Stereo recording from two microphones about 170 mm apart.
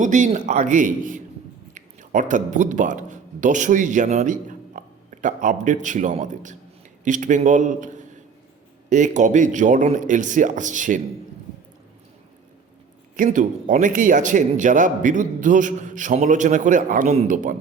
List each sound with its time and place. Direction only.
0.0 s a man's voice: 45° right (ahead or behind)
13.1 s a man's voice: 50° right (ahead or behind)